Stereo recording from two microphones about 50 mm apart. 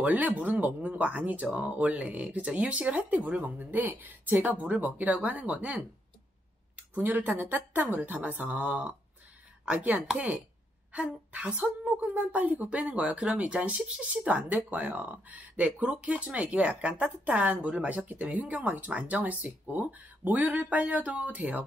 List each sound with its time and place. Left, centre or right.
0.0 s speech: right
7.0 s a woman's voice: right